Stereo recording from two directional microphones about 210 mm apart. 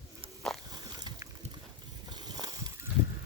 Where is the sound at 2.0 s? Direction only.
20° right (ahead or behind).